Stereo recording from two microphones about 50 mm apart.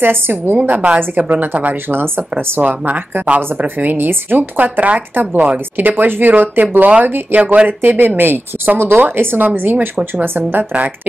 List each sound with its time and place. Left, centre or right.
0.0 s speech: right
0.6 s a woman's voice: right
10.6 s speech: right